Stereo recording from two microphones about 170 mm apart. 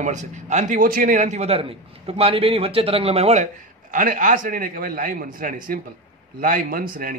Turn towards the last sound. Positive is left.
turn(degrees=-55)  # may be behind; listen again after turning